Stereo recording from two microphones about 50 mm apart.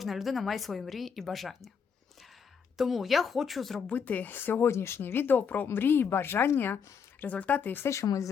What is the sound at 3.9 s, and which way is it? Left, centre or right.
Speech, left.